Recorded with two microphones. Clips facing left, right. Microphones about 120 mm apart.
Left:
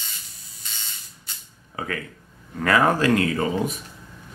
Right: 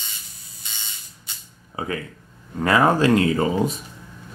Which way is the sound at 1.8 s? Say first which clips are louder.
Right 2 dB; 20° right (ahead or behind).